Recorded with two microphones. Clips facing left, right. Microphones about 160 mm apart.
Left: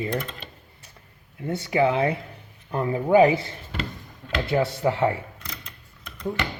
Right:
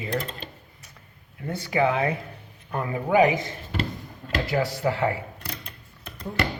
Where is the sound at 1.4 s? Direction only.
25° left (ahead or behind).